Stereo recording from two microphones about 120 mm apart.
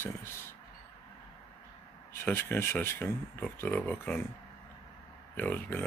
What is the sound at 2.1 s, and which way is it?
Speech, 20° left (ahead or behind).